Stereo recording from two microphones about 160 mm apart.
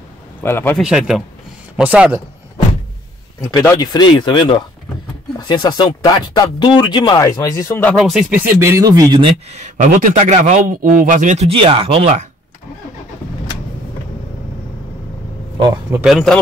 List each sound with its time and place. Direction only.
0.4 s a man's voice: 15° left (ahead or behind)
0.7 s speech: 5° right (ahead or behind)
3.5 s speech: 20° left (ahead or behind)
7.9 s speech: centre (ahead or behind); by 9.3 s 25° right (ahead or behind)
9.5 s a man's voice: 50° right (ahead or behind)
15.9 s speech: 5° right (ahead or behind)